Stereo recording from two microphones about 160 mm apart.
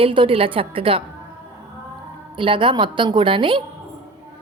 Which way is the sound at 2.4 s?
30° right (ahead or behind).